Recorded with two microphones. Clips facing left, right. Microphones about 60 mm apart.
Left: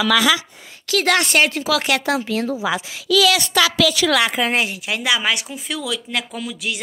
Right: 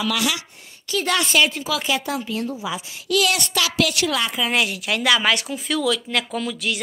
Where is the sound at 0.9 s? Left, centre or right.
Left.